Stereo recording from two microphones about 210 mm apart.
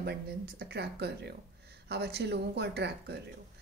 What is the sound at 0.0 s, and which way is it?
Speech, 50° right (ahead or behind).